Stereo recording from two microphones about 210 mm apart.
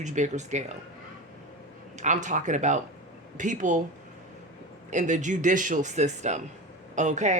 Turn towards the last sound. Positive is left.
turn(degrees=-35)  # may be behind; listen again after turning